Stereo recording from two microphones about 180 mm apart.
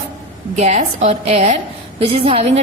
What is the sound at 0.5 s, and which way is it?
A woman's voice, 40° right (ahead or behind).